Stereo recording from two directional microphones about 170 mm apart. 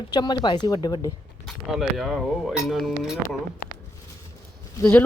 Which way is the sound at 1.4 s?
Centre (ahead or behind).